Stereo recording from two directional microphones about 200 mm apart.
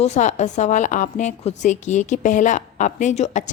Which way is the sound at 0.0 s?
35° left (ahead or behind).